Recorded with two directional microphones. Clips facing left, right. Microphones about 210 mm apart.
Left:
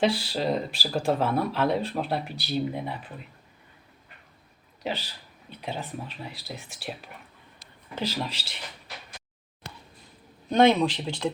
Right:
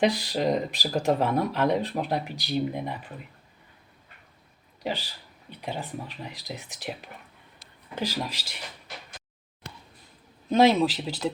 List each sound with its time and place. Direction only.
0.0 s speech: 15° right (ahead or behind)
4.8 s speech: 15° right (ahead or behind)
7.9 s speech: 10° right (ahead or behind)
10.5 s speech: 5° right (ahead or behind)